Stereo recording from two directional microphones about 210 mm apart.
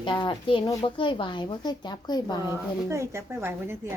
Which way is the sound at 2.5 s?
10° right (ahead or behind).